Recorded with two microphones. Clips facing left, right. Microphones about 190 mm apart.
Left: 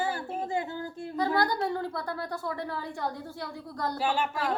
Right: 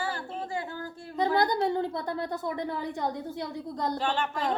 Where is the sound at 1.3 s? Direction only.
20° right (ahead or behind).